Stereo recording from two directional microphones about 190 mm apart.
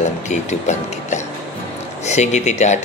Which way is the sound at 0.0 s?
40° left (ahead or behind).